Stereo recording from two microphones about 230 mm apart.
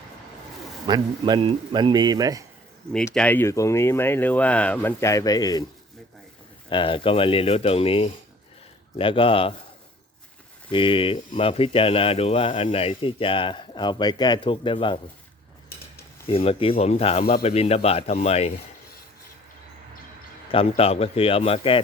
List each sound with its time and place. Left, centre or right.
0.9 s a man's voice: centre
2.9 s speech: centre
6.7 s speech: left
10.7 s speech: left
16.2 s speech: left
20.5 s speech: left